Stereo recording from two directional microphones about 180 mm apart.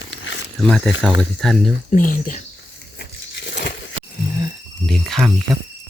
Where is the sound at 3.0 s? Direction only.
65° left (ahead or behind).